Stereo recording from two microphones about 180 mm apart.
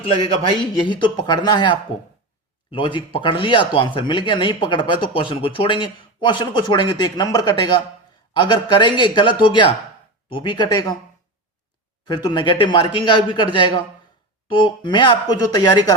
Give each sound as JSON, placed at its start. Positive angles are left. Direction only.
{"t": 0.8, "sound": "speech", "side_deg": 25}
{"t": 12.0, "sound": "speech", "side_deg": 25}